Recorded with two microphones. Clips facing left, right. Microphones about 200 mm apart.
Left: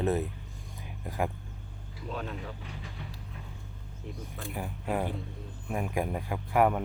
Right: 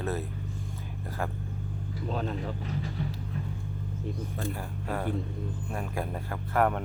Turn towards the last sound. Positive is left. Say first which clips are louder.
# left 1 dB
turn(degrees=10)  # may be behind; listen again after turning